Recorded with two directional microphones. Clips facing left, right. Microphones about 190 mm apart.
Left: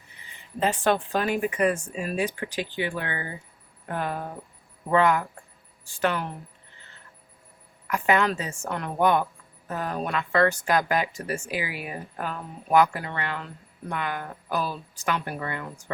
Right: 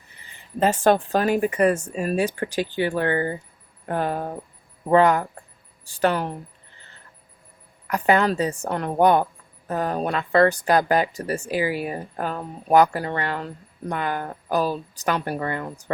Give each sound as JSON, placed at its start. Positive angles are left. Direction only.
{"t": 0.6, "sound": "speech", "side_deg": -40}
{"t": 7.9, "sound": "speech", "side_deg": -35}